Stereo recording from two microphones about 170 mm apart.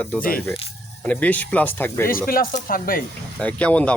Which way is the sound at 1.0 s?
10° left (ahead or behind).